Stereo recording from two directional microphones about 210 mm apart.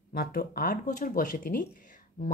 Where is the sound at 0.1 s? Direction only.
45° left (ahead or behind).